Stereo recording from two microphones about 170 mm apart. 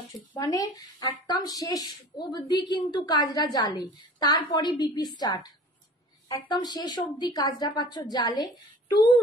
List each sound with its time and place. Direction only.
0.3 s speech: 20° left (ahead or behind)
6.5 s speech: 25° left (ahead or behind)